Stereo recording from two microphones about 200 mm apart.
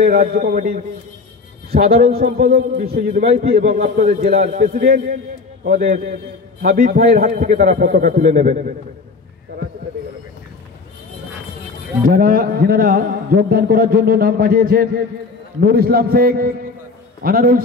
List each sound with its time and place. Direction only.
0.0 s a man's voice: 45° right (ahead or behind)
2.0 s a man's voice: 35° right (ahead or behind)
2.4 s a man's voice: 50° right (ahead or behind)
12.0 s a man's voice: 45° right (ahead or behind)